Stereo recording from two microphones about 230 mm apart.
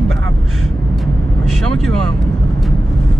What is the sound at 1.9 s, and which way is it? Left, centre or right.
Speech, right.